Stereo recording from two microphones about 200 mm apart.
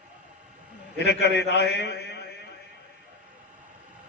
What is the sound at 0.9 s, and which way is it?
A man's voice, 60° left (ahead or behind).